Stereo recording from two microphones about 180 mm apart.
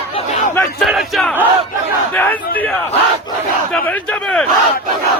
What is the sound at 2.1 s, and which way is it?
Chatter, 10° left (ahead or behind).